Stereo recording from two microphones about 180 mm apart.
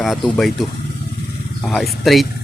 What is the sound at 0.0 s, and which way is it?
Speech, centre (ahead or behind).